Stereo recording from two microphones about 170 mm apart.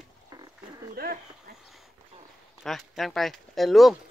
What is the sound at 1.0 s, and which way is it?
Speech, 65° right (ahead or behind).